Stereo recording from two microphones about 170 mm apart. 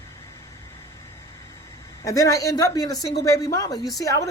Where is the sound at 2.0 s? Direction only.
20° left (ahead or behind).